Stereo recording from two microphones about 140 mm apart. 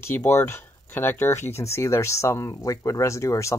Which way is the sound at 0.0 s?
15° left (ahead or behind).